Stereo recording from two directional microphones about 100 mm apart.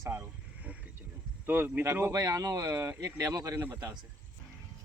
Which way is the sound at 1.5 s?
20° right (ahead or behind).